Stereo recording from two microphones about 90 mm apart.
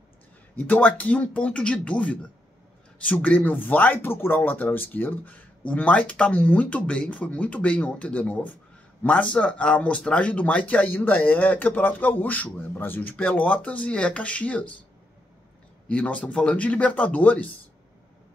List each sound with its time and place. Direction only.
0.6 s speech: 20° left (ahead or behind)
15.9 s speech: 15° left (ahead or behind)